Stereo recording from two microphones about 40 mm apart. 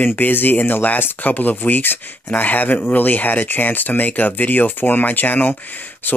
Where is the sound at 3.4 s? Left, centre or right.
Left.